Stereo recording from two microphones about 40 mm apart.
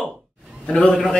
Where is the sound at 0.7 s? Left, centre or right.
Centre.